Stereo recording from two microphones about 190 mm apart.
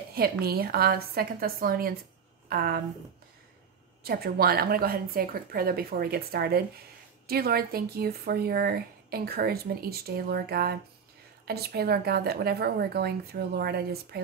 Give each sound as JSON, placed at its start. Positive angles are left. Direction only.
{"t": 0.1, "sound": "a woman's voice", "side_deg": -55}
{"t": 4.0, "sound": "a woman's voice", "side_deg": -55}